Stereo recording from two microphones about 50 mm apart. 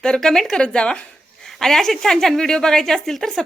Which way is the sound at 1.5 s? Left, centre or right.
Centre.